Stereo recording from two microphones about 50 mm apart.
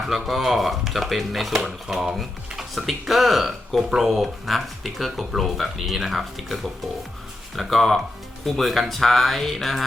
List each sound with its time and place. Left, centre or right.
0.1 s speech: centre